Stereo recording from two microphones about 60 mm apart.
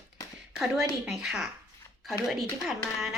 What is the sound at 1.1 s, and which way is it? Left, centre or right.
Speech, centre.